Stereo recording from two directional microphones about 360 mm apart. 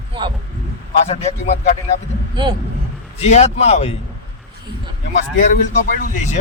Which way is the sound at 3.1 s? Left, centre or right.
Centre.